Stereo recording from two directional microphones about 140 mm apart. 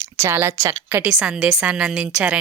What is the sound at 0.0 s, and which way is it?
A woman's voice, 15° right (ahead or behind).